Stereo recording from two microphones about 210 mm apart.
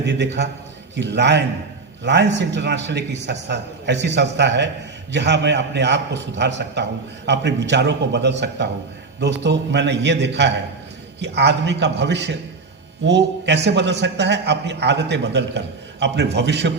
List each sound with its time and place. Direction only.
0.9 s a man's voice: 55° right (ahead or behind)